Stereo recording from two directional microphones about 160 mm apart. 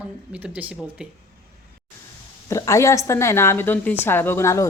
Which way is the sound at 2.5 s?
20° left (ahead or behind).